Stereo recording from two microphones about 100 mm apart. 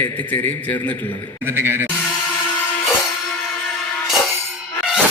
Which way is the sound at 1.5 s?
20° right (ahead or behind).